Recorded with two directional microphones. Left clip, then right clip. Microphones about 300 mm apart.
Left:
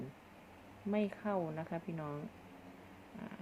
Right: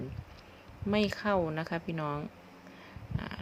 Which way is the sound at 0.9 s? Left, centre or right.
Right.